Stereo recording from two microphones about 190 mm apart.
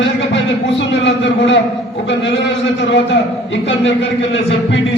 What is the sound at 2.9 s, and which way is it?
A man's voice, 70° left (ahead or behind).